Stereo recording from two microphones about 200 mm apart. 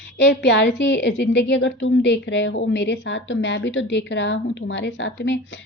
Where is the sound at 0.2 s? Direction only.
60° left (ahead or behind).